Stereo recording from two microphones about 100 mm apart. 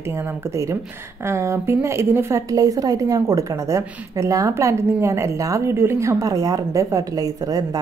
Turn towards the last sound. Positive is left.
turn(degrees=-40)  # may be behind; listen again after turning